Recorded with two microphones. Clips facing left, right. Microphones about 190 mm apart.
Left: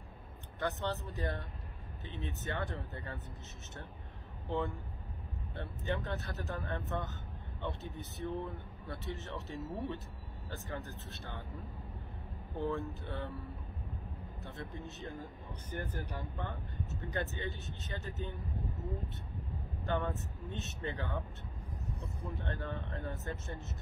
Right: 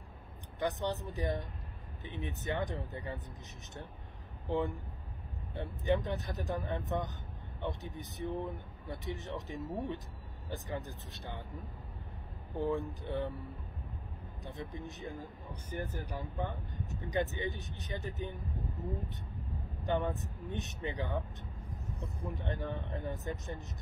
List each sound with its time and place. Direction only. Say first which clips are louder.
0.6 s speech: right 2 dB; 15° right (ahead or behind)
4.5 s speech: right 3 dB; 15° right (ahead or behind)
12.5 s speech: right 2 dB; 15° right (ahead or behind)
19.9 s speech: right 2 dB; 15° right (ahead or behind)